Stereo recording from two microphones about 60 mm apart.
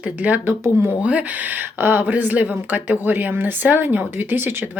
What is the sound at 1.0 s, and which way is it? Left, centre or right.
Speech, right.